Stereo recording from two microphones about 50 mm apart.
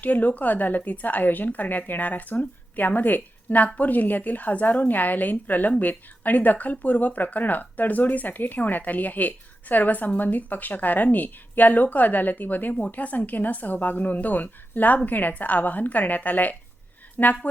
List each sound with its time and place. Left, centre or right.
0.0 s speech: left